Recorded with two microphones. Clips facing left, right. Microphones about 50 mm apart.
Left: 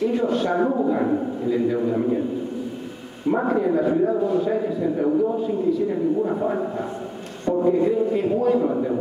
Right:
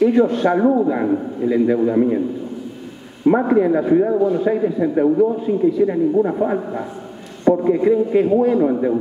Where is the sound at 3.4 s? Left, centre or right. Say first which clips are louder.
Right 5 dB; right.